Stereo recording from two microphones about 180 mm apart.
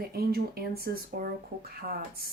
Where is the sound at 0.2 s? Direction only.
55° right (ahead or behind).